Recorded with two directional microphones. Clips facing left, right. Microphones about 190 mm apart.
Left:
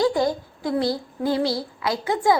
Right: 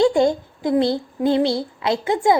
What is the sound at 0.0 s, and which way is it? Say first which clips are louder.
Speech: right 5 dB; 25° right (ahead or behind).